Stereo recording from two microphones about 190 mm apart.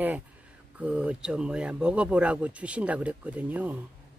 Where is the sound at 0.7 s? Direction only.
5° right (ahead or behind).